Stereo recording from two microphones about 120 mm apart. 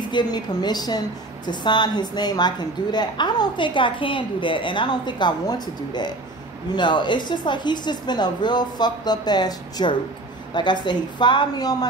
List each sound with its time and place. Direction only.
0.1 s a woman's voice: 35° left (ahead or behind)